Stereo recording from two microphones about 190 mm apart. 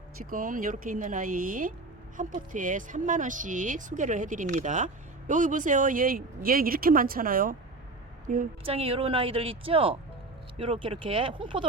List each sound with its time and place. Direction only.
0.3 s speech: 45° right (ahead or behind)
8.6 s a woman's voice: 30° right (ahead or behind)